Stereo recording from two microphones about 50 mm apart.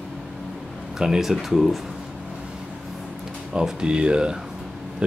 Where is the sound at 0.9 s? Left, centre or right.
Centre.